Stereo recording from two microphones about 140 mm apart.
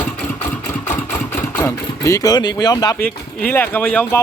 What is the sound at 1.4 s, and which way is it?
Speech, 15° left (ahead or behind).